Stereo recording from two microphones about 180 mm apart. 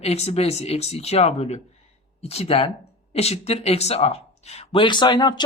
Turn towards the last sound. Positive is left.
turn(degrees=25)  # may be behind; listen again after turning